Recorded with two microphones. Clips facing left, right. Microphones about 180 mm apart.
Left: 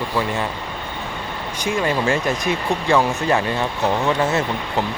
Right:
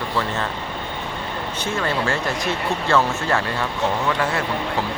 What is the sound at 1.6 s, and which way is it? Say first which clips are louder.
Speech: left 4 dB; 15° left (ahead or behind).